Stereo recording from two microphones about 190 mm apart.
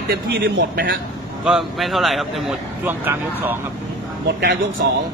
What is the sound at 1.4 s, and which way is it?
Speech, centre (ahead or behind).